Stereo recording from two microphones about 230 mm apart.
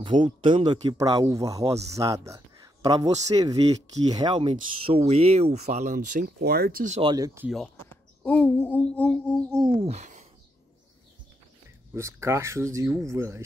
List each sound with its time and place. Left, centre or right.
0.0 s speech: right
7.4 s speech: centre
9.5 s speech: centre
9.8 s speech: right
11.9 s speech: centre